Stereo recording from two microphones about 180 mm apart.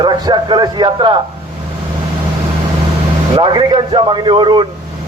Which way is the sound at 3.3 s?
25° right (ahead or behind).